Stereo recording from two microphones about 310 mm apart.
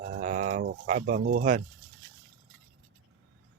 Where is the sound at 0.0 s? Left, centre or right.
Right.